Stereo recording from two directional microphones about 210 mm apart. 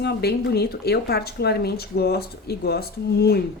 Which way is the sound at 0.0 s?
50° left (ahead or behind).